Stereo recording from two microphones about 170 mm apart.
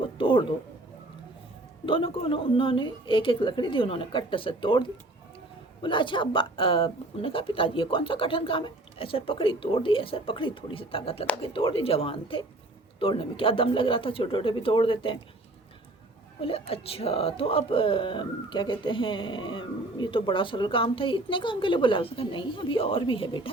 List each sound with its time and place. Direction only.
0.0 s a sound: 30° left (ahead or behind)
1.9 s speech: 30° left (ahead or behind)
16.4 s speech: 35° left (ahead or behind)